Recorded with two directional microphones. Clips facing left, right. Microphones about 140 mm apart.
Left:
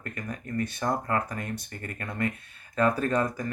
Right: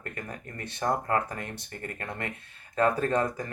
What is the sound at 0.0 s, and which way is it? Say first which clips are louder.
Speech: left 2 dB; 25° right (ahead or behind).